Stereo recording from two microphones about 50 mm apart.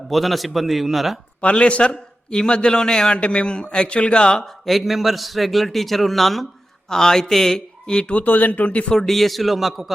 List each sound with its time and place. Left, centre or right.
0.1 s a man's voice: centre
1.4 s a man's voice: left
4.6 s a man's voice: centre; by 8.9 s left
8.9 s a man's voice: centre